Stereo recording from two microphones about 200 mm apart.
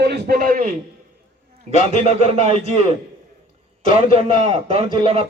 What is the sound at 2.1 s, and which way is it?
Speech, 35° right (ahead or behind).